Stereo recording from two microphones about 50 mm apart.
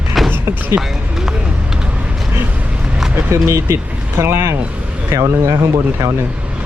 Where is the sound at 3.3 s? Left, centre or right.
Right.